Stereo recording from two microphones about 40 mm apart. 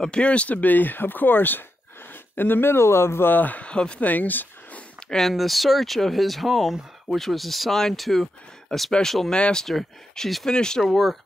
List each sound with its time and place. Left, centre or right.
0.0 s speech: left
3.3 s speech: left
3.6 s speech: left
4.0 s speech: left
5.3 s speech: centre
9.3 s speech: left
10.1 s speech: centre
10.8 s speech: centre